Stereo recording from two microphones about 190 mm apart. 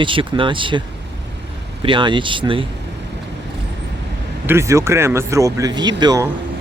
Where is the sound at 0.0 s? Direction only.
25° right (ahead or behind).